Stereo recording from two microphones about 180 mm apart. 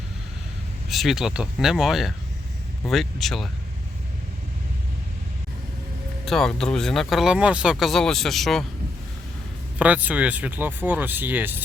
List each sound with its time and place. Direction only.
0.9 s speech: centre (ahead or behind)
6.2 s speech: centre (ahead or behind)
9.7 s speech: 10° right (ahead or behind)